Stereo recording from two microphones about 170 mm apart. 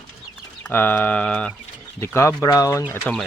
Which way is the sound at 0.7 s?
10° left (ahead or behind).